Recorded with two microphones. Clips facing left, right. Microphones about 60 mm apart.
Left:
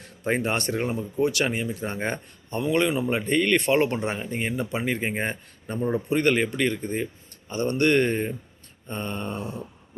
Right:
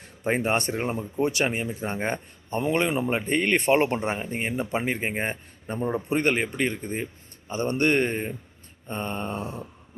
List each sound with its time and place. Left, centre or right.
0.4 s speech: right